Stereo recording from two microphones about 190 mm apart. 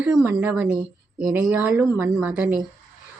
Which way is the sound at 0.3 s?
5° right (ahead or behind).